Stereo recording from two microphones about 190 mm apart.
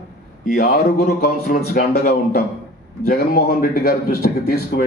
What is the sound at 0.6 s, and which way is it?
A man's voice, 50° left (ahead or behind).